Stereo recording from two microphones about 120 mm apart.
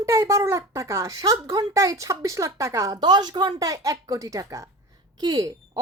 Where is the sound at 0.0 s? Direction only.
25° right (ahead or behind).